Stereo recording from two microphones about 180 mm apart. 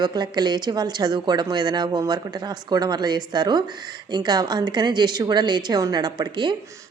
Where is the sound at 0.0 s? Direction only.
25° right (ahead or behind).